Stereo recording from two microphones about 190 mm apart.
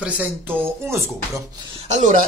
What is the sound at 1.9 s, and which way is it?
Speech, 40° right (ahead or behind).